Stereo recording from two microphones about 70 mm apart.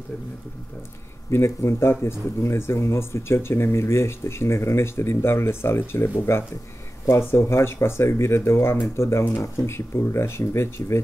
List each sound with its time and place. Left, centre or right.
1.3 s a man's voice: left